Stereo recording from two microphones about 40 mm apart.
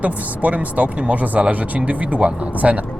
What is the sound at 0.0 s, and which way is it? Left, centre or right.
Speech, right.